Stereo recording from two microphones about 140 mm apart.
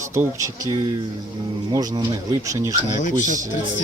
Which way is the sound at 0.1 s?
20° right (ahead or behind).